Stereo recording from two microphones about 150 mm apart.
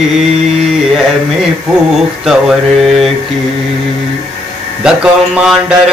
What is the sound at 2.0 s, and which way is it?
Mantra, centre (ahead or behind).